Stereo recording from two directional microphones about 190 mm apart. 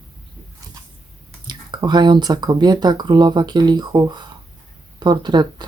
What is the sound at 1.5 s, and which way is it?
Speech, 25° right (ahead or behind).